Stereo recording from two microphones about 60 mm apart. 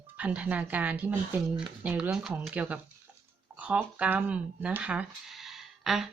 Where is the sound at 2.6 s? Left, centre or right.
Right.